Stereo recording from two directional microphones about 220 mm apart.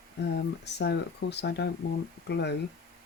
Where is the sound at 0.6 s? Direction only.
50° left (ahead or behind).